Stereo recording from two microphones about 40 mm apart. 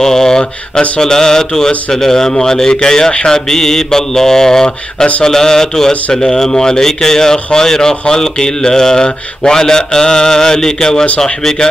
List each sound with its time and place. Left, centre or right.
0.0 s speech: centre